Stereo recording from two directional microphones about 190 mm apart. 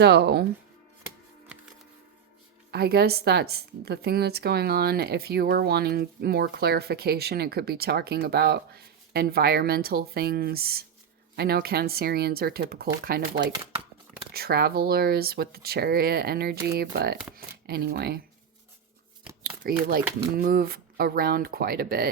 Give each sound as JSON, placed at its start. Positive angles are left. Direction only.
{"t": 0.0, "sound": "a woman's voice", "side_deg": -60}
{"t": 1.5, "sound": "music", "side_deg": -5}
{"t": 2.7, "sound": "a woman's voice", "side_deg": -55}
{"t": 19.4, "sound": "shuffling cards", "side_deg": -50}
{"t": 20.3, "sound": "speech", "side_deg": -50}